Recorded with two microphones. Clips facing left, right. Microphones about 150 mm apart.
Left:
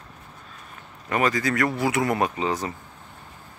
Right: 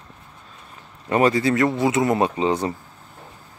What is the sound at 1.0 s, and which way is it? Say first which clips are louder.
Speech: right 5 dB; 30° right (ahead or behind).